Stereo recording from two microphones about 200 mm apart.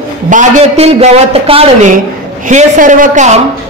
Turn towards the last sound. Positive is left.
turn(degrees=-35)  # may be behind; listen again after turning